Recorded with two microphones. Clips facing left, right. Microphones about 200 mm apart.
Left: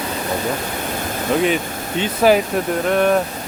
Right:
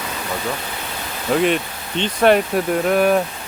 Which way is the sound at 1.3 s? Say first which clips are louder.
Right 1 dB; centre (ahead or behind).